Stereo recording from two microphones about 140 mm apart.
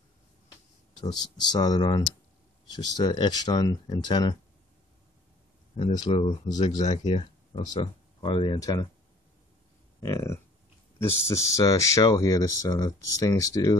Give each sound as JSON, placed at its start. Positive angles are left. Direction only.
{"t": 1.0, "sound": "speech", "side_deg": 30}
{"t": 5.8, "sound": "speech", "side_deg": 35}
{"t": 6.9, "sound": "speech", "side_deg": 45}
{"t": 8.5, "sound": "speech", "side_deg": 25}
{"t": 9.9, "sound": "speech", "side_deg": 25}